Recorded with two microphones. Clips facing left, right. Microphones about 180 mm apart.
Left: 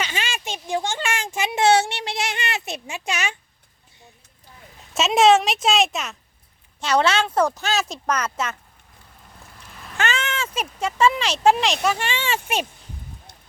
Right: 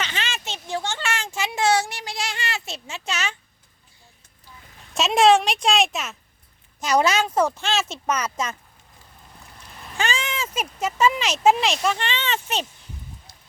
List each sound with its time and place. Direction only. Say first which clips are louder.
0.0 s a sound: left 2 dB; 10° left (ahead or behind)
3.1 s speech: left 2 dB; 15° left (ahead or behind)
4.9 s a woman's voice: left 1 dB; centre (ahead or behind)
10.0 s speech: left 1 dB; 10° right (ahead or behind); by 12.6 s 10° left (ahead or behind)